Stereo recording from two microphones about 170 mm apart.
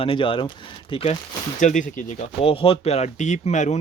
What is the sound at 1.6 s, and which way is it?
Speech, 50° left (ahead or behind).